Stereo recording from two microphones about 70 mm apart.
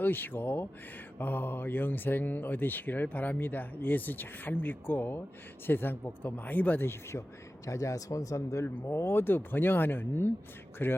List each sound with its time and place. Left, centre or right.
0.0 s speech: left
7.7 s speech: left